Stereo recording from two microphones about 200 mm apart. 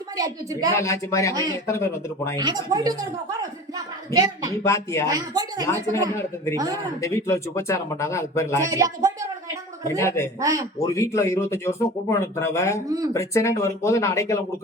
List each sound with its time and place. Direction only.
0.7 s speech: 15° left (ahead or behind)
2.4 s speech: 20° right (ahead or behind)
4.1 s speech: 15° right (ahead or behind)
4.6 s speech: 15° left (ahead or behind)
5.0 s speech: 20° right (ahead or behind)
7.0 s speech: 15° left (ahead or behind)
8.6 s speech: 15° right (ahead or behind)
10.0 s speech: 15° left (ahead or behind)
10.4 s speech: 15° right (ahead or behind)
10.8 s speech: 15° left (ahead or behind)